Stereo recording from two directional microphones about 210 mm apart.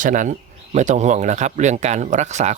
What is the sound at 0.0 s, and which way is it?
Speech, 40° right (ahead or behind).